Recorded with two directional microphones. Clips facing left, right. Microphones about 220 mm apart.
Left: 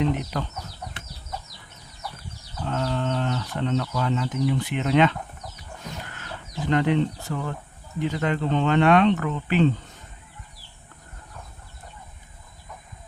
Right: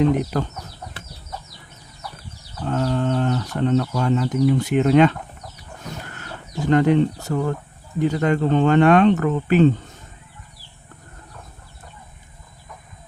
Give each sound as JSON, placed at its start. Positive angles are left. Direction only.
{"t": 0.0, "sound": "speech", "side_deg": -45}
{"t": 2.6, "sound": "speech", "side_deg": -45}
{"t": 6.1, "sound": "a sound", "side_deg": -45}
{"t": 7.9, "sound": "speech", "side_deg": -45}